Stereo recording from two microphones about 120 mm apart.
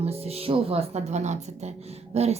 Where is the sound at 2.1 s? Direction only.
60° right (ahead or behind).